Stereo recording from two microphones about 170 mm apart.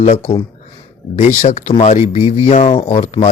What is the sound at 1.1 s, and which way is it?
A man's voice, 45° left (ahead or behind).